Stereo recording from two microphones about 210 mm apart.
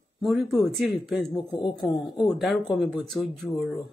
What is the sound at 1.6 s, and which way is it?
Speech, 20° left (ahead or behind).